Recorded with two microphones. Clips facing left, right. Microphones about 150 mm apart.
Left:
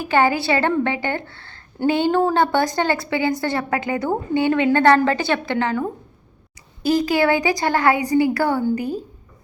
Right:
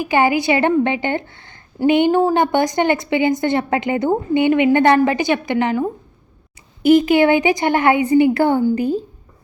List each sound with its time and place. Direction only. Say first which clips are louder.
0.0 s a woman's voice: right 2 dB; 15° right (ahead or behind)